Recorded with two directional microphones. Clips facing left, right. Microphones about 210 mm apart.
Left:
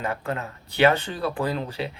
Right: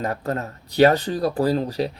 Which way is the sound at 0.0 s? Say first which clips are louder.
Right 3 dB; 40° right (ahead or behind).